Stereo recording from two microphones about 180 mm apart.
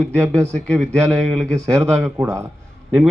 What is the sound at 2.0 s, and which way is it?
Speech, 15° right (ahead or behind).